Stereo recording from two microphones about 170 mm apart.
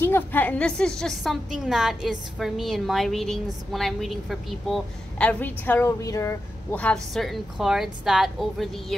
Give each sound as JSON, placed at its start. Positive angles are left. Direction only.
{"t": 0.0, "sound": "a woman's voice", "side_deg": 10}
{"t": 6.7, "sound": "a woman's voice", "side_deg": 5}